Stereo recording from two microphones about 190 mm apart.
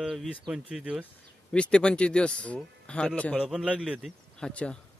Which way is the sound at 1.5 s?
5° left (ahead or behind).